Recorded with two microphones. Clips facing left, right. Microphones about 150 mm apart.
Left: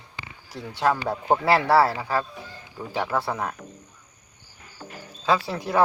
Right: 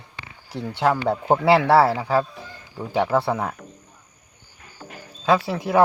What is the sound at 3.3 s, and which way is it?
Speech, 10° right (ahead or behind).